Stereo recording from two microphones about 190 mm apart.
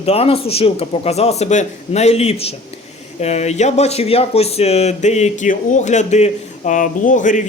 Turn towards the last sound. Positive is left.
turn(degrees=40)  # may be behind; listen again after turning